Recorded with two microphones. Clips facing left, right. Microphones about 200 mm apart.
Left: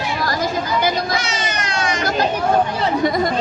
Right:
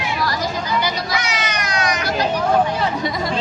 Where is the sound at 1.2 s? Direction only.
30° left (ahead or behind).